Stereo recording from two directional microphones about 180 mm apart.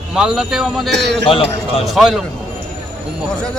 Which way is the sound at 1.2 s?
30° left (ahead or behind).